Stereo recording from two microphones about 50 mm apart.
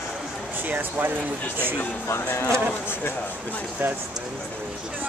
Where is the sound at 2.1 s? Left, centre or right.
Left.